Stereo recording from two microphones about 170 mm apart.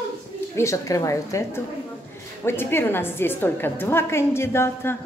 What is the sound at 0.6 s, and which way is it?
A woman's voice, 20° left (ahead or behind).